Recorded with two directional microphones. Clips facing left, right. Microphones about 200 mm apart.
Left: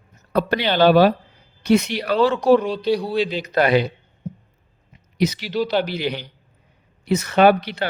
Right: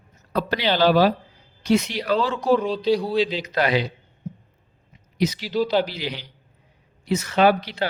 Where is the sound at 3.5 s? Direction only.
55° left (ahead or behind).